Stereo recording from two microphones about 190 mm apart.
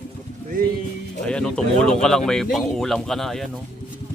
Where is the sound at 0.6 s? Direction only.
50° right (ahead or behind).